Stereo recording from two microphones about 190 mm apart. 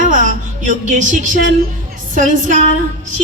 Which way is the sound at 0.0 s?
45° right (ahead or behind).